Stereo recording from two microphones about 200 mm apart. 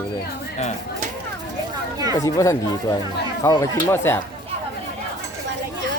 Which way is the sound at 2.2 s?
15° left (ahead or behind).